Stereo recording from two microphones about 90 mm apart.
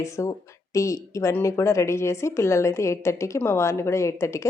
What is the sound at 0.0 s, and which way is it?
A woman's voice, 35° left (ahead or behind).